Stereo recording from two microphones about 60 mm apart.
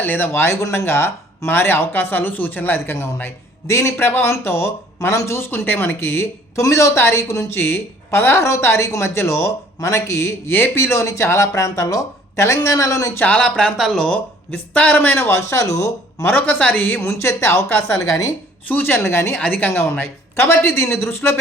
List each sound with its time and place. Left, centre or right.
0.0 s speech: left
0.4 s a woman's voice: left
3.9 s speech: left
6.6 s a woman's voice: left
10.5 s speech: left
13.2 s speech: left
13.7 s speech: centre
14.5 s speech: left
15.2 s speech: left
16.2 s speech: left
17.7 s a woman's voice: left
19.4 s speech: left
20.3 s a woman's voice: left